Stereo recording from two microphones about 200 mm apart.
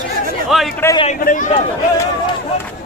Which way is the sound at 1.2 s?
45° left (ahead or behind).